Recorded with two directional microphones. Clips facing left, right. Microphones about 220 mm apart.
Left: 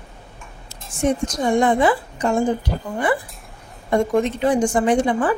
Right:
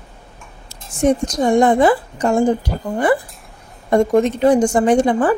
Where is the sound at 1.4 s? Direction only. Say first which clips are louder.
Right 4 dB; 40° right (ahead or behind).